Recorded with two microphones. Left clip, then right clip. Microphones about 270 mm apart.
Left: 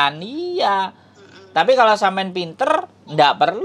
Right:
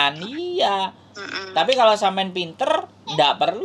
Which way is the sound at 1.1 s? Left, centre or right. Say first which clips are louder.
Right 14 dB; right.